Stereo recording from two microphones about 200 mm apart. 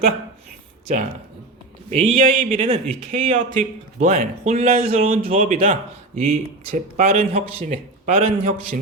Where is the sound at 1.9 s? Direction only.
40° right (ahead or behind).